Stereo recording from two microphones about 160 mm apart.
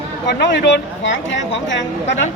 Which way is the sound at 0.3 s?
90° left.